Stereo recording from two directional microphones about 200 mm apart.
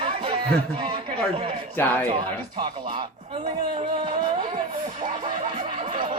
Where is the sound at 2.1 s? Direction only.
25° right (ahead or behind).